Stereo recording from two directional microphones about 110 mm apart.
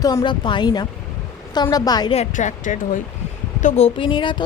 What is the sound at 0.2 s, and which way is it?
Speech, 50° left (ahead or behind).